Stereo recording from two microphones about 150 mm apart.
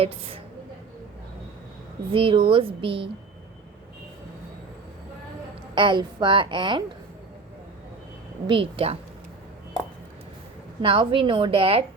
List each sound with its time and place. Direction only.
0.0 s a woman's voice: 40° right (ahead or behind)
2.1 s a woman's voice: 35° right (ahead or behind)
5.7 s a woman's voice: 35° right (ahead or behind)
8.4 s a woman's voice: 35° right (ahead or behind)
10.8 s a woman's voice: 35° right (ahead or behind)